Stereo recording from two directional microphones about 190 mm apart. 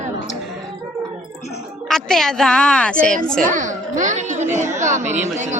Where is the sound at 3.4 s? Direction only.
40° right (ahead or behind).